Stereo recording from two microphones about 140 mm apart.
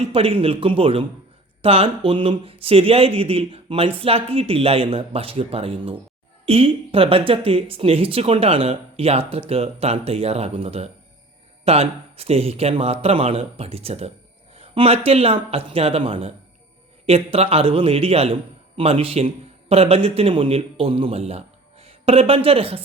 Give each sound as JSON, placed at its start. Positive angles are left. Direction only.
{"t": 0.1, "sound": "a man's voice", "side_deg": -40}